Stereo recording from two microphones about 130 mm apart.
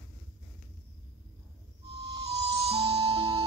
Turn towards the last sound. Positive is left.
turn(degrees=-45)  # may be behind; listen again after turning